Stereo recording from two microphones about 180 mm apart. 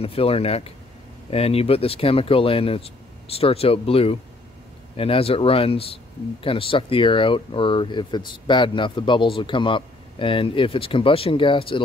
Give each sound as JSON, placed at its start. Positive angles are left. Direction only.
{"t": 0.0, "sound": "speech", "side_deg": 30}